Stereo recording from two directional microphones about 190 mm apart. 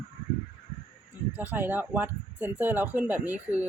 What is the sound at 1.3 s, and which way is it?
Speech, 10° right (ahead or behind).